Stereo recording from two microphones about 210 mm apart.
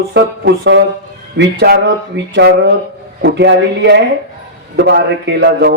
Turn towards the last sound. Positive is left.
turn(degrees=-55)  # may be behind; listen again after turning